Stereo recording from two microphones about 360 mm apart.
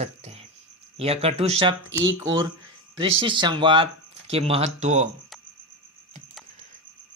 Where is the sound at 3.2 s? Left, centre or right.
Centre.